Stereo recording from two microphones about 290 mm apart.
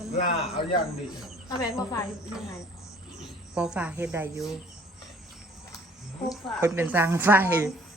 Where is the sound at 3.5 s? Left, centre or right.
Centre.